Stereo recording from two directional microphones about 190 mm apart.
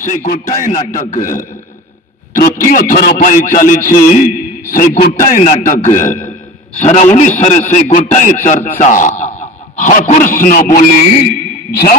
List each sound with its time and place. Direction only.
0.0 s a man's voice: 40° left (ahead or behind)